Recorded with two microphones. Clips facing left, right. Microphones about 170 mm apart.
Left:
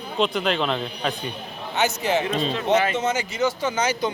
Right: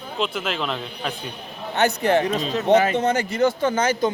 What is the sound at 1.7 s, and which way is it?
Speech, 60° right (ahead or behind).